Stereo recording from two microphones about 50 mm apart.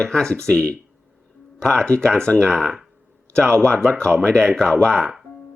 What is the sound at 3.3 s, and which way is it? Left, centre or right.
Speech, centre.